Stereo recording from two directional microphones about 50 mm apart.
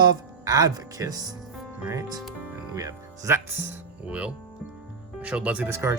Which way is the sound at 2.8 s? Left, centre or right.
Right.